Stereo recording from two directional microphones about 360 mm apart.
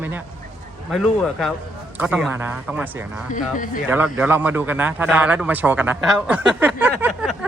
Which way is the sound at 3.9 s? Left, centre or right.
Centre.